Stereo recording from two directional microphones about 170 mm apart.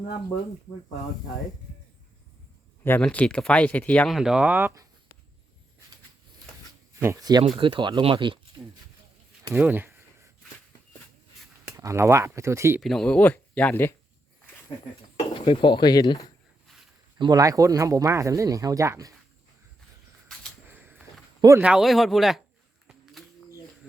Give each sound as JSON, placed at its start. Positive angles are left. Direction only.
{"t": 2.8, "sound": "speech", "side_deg": 10}
{"t": 7.0, "sound": "speech", "side_deg": -20}
{"t": 9.6, "sound": "a sound", "side_deg": -10}
{"t": 11.8, "sound": "speech", "side_deg": -15}
{"t": 12.8, "sound": "speech", "side_deg": 5}
{"t": 15.1, "sound": "speech", "side_deg": 30}
{"t": 17.2, "sound": "speech", "side_deg": -25}
{"t": 20.7, "sound": "a sound", "side_deg": -10}
{"t": 21.6, "sound": "speech", "side_deg": -5}